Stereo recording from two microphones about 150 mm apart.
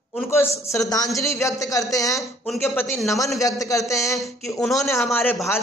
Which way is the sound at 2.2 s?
Centre (ahead or behind).